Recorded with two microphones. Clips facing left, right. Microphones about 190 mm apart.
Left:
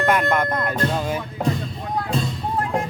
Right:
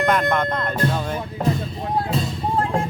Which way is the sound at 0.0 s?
5° left (ahead or behind).